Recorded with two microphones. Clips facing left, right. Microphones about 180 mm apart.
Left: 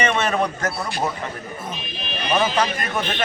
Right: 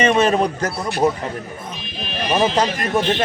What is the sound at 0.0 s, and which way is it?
Speech, 30° right (ahead or behind).